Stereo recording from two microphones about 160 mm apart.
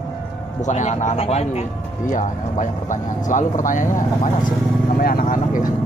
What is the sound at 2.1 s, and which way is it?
Speech, 50° left (ahead or behind).